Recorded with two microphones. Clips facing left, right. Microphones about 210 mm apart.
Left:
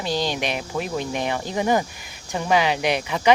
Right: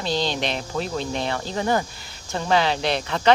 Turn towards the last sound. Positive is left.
turn(degrees=10)  # may be behind; listen again after turning